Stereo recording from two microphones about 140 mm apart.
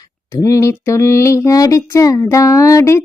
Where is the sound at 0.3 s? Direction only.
20° left (ahead or behind).